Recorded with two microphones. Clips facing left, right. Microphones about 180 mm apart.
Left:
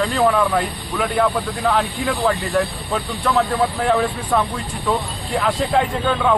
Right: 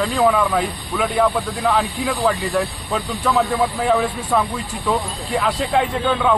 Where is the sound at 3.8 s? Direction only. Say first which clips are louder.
Even; 5° right (ahead or behind).